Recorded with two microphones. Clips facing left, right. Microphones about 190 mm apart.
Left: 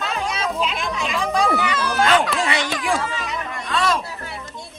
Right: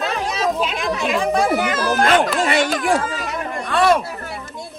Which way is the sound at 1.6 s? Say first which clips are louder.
Right 3 dB; 50° right (ahead or behind).